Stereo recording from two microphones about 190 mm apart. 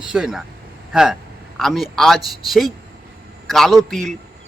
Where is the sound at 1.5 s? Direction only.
Centre (ahead or behind).